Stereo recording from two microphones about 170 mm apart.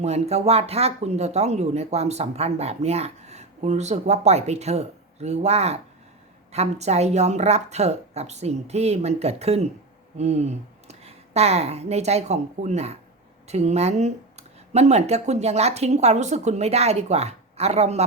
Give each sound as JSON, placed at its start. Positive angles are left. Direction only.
{"t": 0.0, "sound": "speech", "side_deg": -40}